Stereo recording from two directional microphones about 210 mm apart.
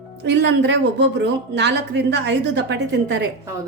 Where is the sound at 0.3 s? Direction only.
55° right (ahead or behind).